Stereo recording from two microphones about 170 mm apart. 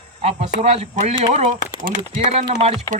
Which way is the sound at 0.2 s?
40° right (ahead or behind).